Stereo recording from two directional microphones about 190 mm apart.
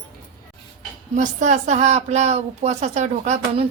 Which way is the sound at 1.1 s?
40° right (ahead or behind).